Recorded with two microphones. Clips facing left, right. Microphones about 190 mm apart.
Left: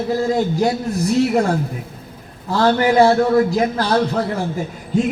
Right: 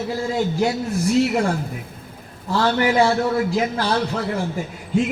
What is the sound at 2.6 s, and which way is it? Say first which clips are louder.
A man's voice: left 4 dB; 40° left (ahead or behind).